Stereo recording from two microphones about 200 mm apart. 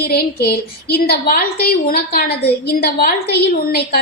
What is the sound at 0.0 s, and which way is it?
A woman's voice, 50° left (ahead or behind).